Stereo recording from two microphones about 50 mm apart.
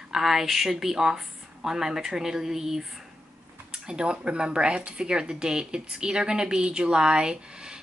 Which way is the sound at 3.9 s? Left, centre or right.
Centre.